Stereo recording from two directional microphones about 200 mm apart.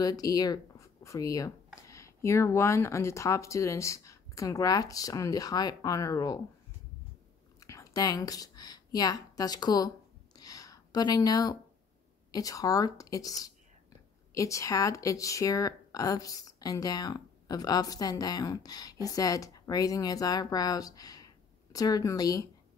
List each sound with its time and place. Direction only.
0.0 s speech: 20° left (ahead or behind)
7.6 s a sound: 15° left (ahead or behind)
12.3 s speech: 15° left (ahead or behind)